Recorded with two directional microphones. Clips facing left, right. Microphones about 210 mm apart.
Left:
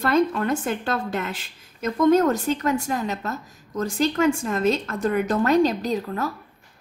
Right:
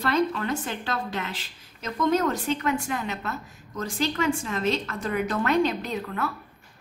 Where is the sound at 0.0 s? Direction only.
50° left (ahead or behind).